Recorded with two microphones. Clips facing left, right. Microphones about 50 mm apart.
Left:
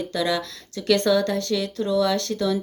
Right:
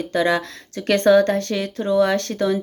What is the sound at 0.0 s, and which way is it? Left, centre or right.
Speech, right.